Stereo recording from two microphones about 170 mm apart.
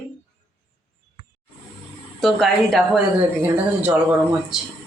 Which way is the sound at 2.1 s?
Centre (ahead or behind).